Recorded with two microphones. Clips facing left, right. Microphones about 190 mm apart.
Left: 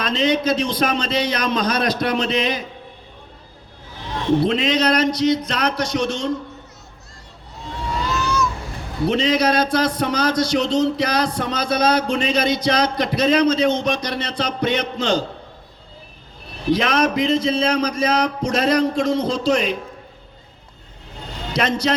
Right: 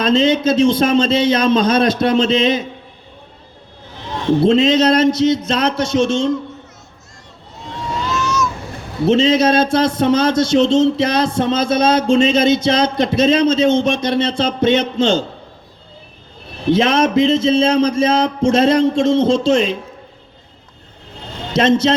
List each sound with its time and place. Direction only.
0.0 s a man's voice: 25° right (ahead or behind)
4.4 s a man's voice: 25° right (ahead or behind)
8.1 s a sound: 35° left (ahead or behind)
9.0 s a man's voice: 25° right (ahead or behind)
16.6 s a man's voice: 25° right (ahead or behind)
21.5 s a man's voice: 25° right (ahead or behind)